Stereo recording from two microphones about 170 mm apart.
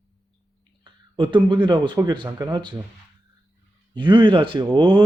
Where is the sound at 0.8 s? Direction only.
30° right (ahead or behind).